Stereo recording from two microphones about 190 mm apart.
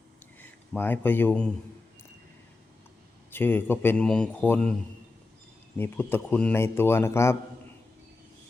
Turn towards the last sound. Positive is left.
turn(degrees=15)  # may be behind; listen again after turning